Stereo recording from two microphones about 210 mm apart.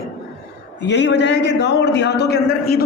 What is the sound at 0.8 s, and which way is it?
A man's voice, 55° left (ahead or behind).